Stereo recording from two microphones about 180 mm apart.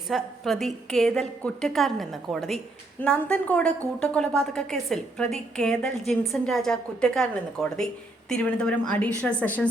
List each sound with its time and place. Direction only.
0.1 s a woman's voice: centre (ahead or behind)